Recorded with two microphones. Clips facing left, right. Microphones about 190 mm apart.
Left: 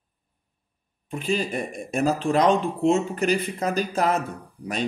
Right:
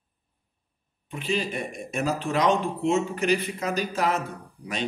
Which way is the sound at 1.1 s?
40° left (ahead or behind).